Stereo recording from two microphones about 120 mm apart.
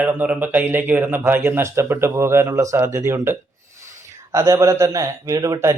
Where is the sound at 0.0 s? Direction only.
15° right (ahead or behind).